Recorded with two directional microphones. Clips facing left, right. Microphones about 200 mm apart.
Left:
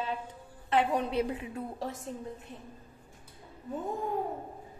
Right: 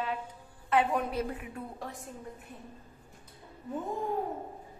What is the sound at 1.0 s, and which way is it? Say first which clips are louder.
Speech: left 3 dB; 20° left (ahead or behind).